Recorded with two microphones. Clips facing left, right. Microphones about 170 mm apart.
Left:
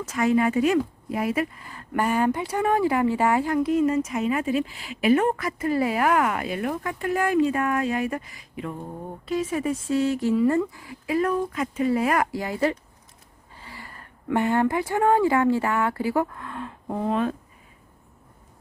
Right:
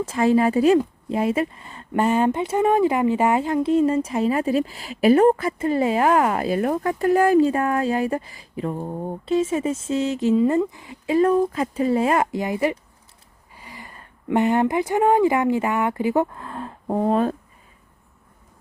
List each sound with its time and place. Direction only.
0.0 s a woman's voice: 30° right (ahead or behind)